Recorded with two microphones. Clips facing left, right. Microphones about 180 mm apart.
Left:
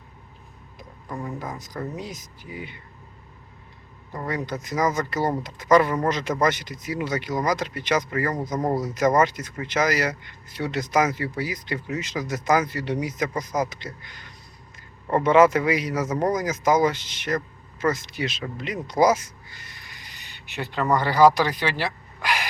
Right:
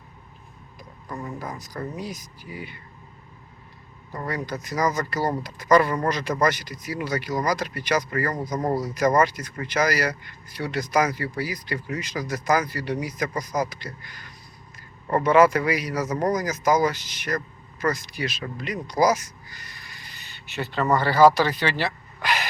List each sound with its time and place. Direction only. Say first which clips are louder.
1.0 s speech: left 1 dB; 10° left (ahead or behind)
2.0 s speech: right 1 dB; 20° left (ahead or behind)
4.4 s speech: left 1 dB; 20° left (ahead or behind)
8.2 s speech: left 1 dB; 10° left (ahead or behind)
8.8 s speech: even; 20° left (ahead or behind)
16.0 s speech: even; 5° left (ahead or behind)
16.3 s speech: even; 25° left (ahead or behind)